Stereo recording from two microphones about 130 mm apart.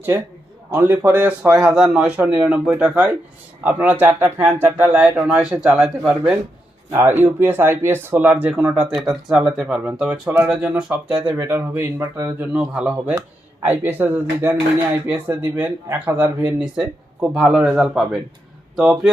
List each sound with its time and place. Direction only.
0.7 s speech: 15° right (ahead or behind)
6.9 s speech: 15° right (ahead or behind)
12.5 s speech: 5° right (ahead or behind)